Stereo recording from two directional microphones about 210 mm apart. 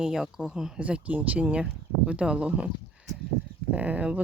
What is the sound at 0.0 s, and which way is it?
Speech, centre (ahead or behind).